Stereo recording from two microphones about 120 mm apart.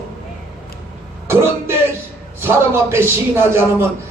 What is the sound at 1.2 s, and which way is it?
A man's voice, 20° right (ahead or behind).